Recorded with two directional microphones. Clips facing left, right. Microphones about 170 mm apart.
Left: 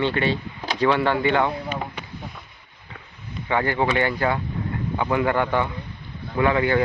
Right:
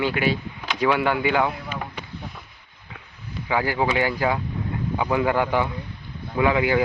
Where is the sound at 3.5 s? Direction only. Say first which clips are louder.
Left 1 dB; 5° right (ahead or behind).